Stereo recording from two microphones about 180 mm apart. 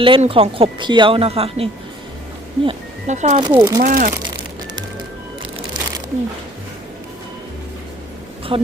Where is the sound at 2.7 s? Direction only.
40° right (ahead or behind).